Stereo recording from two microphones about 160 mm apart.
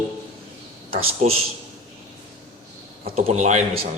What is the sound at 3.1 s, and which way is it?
Speech, 45° right (ahead or behind).